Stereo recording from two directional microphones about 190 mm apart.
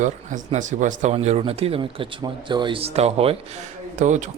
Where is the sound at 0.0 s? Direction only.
40° right (ahead or behind).